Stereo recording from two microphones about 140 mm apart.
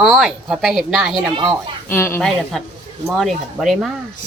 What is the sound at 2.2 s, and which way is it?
Speech, 5° left (ahead or behind).